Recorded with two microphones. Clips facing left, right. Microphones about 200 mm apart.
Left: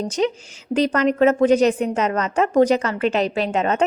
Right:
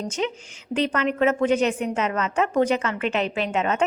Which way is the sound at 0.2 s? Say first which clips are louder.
Left 8 dB; 35° left (ahead or behind).